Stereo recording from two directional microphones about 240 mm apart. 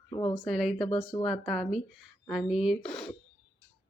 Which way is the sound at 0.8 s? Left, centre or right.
Left.